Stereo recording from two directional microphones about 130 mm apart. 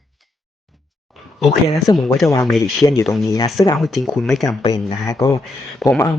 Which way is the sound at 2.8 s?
25° left (ahead or behind).